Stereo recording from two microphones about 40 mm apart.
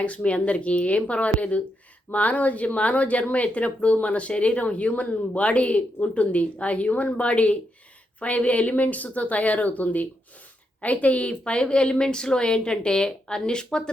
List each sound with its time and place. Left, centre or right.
0.0 s a woman's voice: left